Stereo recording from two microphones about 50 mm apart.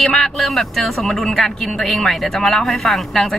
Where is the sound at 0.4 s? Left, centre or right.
Centre.